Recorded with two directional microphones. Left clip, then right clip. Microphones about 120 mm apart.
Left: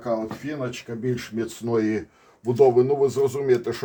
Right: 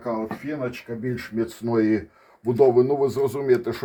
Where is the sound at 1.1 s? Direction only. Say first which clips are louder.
Right 2 dB; 35° right (ahead or behind).